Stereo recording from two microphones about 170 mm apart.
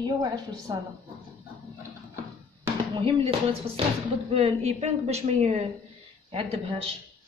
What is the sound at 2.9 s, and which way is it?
Speech, 30° right (ahead or behind).